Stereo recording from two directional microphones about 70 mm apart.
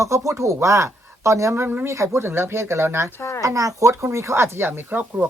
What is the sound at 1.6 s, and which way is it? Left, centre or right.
Speech, right.